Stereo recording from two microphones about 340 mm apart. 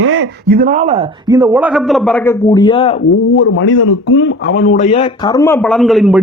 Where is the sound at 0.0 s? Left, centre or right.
Right; by 2.9 s centre.